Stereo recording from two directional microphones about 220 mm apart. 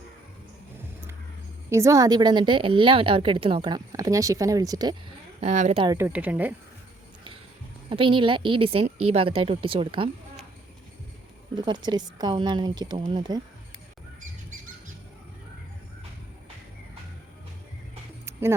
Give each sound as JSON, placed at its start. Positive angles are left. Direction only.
{"t": 1.7, "sound": "a woman's voice", "side_deg": -15}
{"t": 5.4, "sound": "a woman's voice", "side_deg": -30}
{"t": 6.0, "sound": "a woman's voice", "side_deg": -5}
{"t": 7.9, "sound": "a woman's voice", "side_deg": -25}
{"t": 11.5, "sound": "a woman's voice", "side_deg": -20}
{"t": 18.3, "sound": "a sound", "side_deg": -10}